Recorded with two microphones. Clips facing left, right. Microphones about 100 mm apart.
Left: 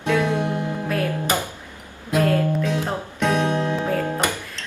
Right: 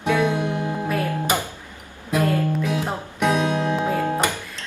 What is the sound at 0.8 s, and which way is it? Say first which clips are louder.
Music: even; 10° right (ahead or behind).